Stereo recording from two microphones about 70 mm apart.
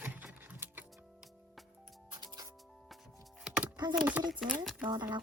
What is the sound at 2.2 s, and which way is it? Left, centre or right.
Music, right.